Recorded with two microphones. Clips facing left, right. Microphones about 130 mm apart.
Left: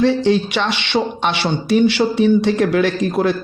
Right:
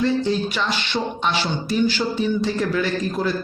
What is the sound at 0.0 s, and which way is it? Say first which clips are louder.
A man's voice: left 6 dB; 75° left (ahead or behind).